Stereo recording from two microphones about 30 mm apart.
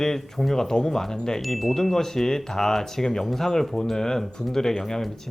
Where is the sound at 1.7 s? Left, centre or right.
Centre.